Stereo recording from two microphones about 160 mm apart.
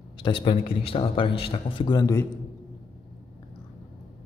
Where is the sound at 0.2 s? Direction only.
35° left (ahead or behind).